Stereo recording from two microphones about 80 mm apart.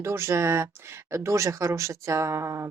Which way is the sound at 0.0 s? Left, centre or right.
Right.